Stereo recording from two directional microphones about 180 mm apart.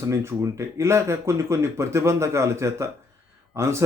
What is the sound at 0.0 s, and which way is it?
Speech, 15° right (ahead or behind).